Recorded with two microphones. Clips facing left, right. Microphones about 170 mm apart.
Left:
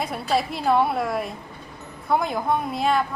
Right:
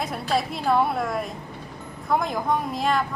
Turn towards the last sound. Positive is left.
turn(degrees=0)  # may be behind; listen again after turning